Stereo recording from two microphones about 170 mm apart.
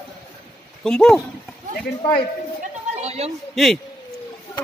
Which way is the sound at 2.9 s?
40° right (ahead or behind).